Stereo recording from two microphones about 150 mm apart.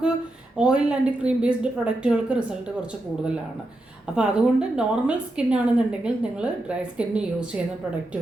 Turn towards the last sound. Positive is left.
turn(degrees=-5)  # may be behind; listen again after turning